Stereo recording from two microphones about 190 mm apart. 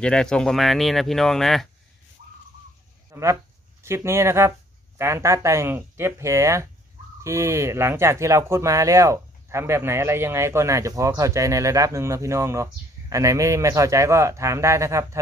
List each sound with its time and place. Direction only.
0.0 s speech: 5° left (ahead or behind)
3.1 s a sound: 15° right (ahead or behind)
3.8 s speech: 15° right (ahead or behind)